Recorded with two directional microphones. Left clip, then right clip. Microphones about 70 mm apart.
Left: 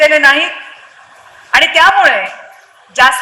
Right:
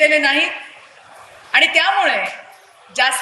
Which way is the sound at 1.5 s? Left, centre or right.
Left.